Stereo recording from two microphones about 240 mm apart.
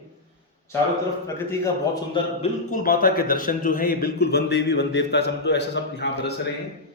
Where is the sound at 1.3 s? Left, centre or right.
Centre.